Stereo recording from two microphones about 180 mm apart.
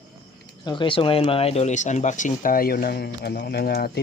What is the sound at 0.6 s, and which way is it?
Speech, 25° left (ahead or behind).